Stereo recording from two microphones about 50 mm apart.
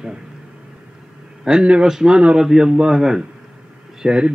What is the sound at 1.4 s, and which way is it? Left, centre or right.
A man's voice, centre.